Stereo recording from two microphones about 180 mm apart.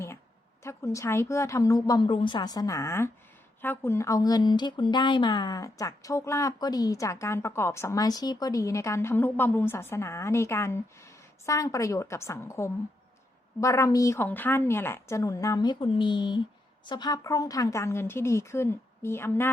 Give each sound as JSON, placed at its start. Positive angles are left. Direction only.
{"t": 0.6, "sound": "speech", "side_deg": 15}